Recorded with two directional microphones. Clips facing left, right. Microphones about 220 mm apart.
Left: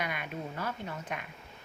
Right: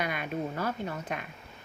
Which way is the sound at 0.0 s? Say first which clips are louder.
Right 5 dB; 35° right (ahead or behind).